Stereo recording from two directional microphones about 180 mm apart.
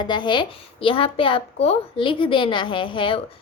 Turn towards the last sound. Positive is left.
turn(degrees=30)  # may be behind; listen again after turning